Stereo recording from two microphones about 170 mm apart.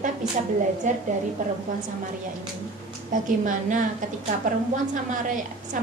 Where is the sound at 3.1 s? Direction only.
50° right (ahead or behind).